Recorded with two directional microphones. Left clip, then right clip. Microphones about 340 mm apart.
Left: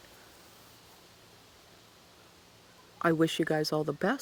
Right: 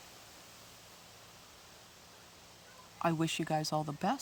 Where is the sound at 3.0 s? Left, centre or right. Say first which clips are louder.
Left 6 dB; right.